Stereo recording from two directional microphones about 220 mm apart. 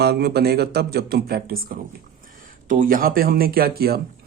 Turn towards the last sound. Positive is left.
turn(degrees=-45)  # may be behind; listen again after turning